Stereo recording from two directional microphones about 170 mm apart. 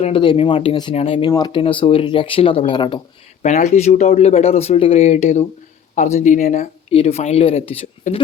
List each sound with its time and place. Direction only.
0.0 s speech: 30° left (ahead or behind)
3.4 s speech: 45° left (ahead or behind)